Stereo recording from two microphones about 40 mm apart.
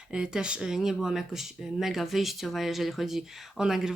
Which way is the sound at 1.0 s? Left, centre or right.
Centre.